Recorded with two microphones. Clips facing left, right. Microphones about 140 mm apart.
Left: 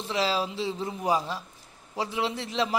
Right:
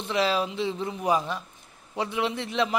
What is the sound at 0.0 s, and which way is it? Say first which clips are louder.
A man's voice: right 2 dB; 30° left (ahead or behind).